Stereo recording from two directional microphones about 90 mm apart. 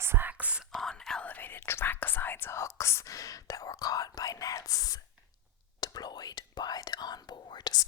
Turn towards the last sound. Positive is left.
turn(degrees=50)  # may be behind; listen again after turning